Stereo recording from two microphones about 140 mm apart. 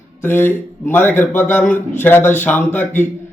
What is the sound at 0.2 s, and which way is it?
A man's voice, 15° left (ahead or behind).